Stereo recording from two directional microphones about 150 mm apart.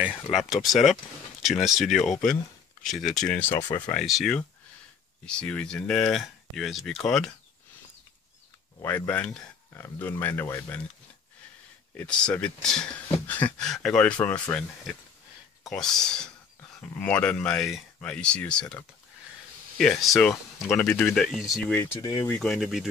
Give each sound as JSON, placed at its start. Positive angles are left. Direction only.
{"t": 0.0, "sound": "speech", "side_deg": -5}
{"t": 3.6, "sound": "speech", "side_deg": 30}
{"t": 3.9, "sound": "speech", "side_deg": 0}
{"t": 8.8, "sound": "speech", "side_deg": 10}
{"t": 12.0, "sound": "speech", "side_deg": 5}
{"t": 15.6, "sound": "speech", "side_deg": 5}
{"t": 22.0, "sound": "speech", "side_deg": 25}
{"t": 22.3, "sound": "speech", "side_deg": 5}